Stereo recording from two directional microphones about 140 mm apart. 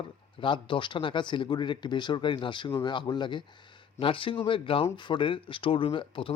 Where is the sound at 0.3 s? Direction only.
35° left (ahead or behind).